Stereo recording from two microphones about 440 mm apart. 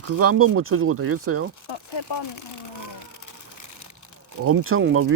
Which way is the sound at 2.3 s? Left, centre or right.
Left.